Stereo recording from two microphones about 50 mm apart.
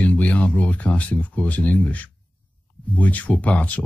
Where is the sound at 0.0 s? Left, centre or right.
Left.